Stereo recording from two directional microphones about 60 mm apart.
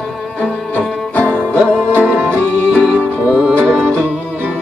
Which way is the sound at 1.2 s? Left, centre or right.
Left.